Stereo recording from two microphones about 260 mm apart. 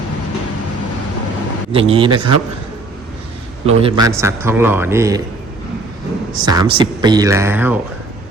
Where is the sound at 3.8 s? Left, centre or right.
Centre.